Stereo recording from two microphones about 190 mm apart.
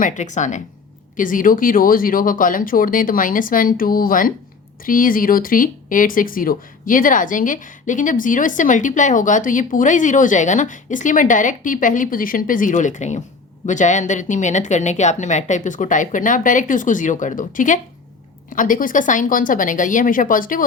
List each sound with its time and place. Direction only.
0.0 s speech: 40° left (ahead or behind)